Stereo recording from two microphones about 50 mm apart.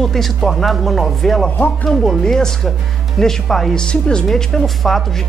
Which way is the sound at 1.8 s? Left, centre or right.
Left.